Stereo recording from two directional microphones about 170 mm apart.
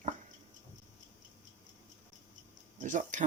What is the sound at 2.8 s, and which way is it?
Speech, 50° right (ahead or behind).